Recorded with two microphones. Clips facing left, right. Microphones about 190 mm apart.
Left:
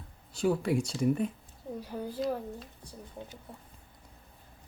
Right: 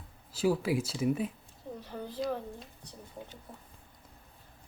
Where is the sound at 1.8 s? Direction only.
10° left (ahead or behind).